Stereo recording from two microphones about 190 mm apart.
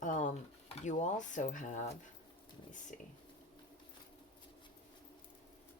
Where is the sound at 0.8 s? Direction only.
40° left (ahead or behind).